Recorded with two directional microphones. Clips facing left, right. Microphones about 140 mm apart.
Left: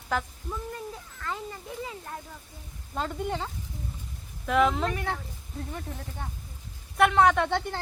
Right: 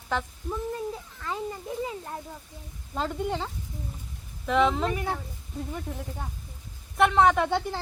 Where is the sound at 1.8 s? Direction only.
25° right (ahead or behind).